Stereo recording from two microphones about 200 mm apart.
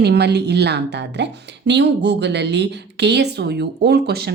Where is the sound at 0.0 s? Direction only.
55° right (ahead or behind).